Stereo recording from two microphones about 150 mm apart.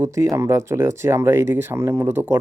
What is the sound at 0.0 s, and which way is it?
Speech, 20° right (ahead or behind).